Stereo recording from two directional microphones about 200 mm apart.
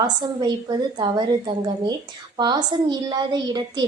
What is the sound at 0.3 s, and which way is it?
Speech, 20° right (ahead or behind).